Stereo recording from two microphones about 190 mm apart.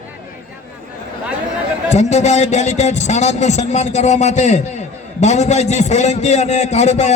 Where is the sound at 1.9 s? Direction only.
35° left (ahead or behind).